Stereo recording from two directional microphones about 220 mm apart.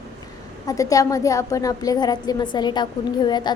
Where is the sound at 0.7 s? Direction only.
15° left (ahead or behind).